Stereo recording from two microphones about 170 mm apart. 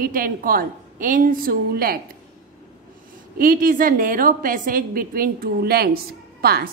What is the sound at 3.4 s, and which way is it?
Speech, 55° right (ahead or behind).